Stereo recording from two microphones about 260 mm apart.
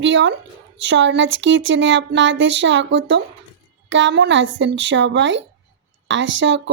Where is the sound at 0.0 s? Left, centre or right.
Right.